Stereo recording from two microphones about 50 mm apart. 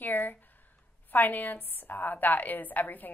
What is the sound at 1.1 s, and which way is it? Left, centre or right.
A woman's voice, left.